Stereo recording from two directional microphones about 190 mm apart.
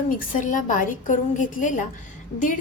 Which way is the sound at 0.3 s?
45° left (ahead or behind).